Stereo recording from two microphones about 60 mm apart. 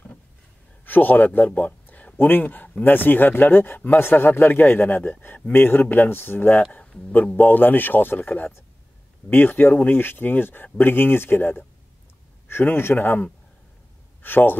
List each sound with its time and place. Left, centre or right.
0.8 s speech: left
6.8 s speech: centre
7.3 s speech: left
12.6 s speech: left
12.9 s speech: left
14.2 s speech: left